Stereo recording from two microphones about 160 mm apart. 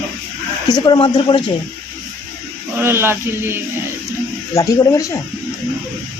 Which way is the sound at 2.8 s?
15° right (ahead or behind).